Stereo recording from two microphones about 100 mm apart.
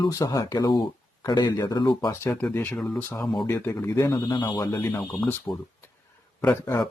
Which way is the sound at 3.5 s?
20° left (ahead or behind).